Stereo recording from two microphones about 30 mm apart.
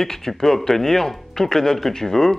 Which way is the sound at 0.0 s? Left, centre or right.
Centre.